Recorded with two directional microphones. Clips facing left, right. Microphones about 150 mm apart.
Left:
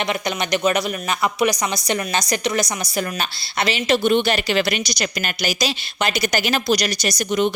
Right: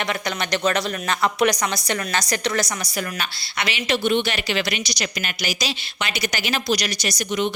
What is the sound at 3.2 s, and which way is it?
Speech, 35° left (ahead or behind).